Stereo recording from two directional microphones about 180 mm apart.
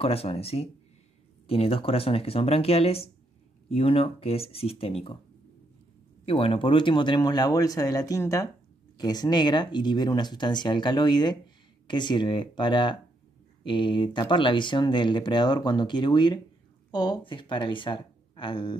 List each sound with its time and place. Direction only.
0.0 s speech: 35° left (ahead or behind)
6.2 s speech: 30° left (ahead or behind)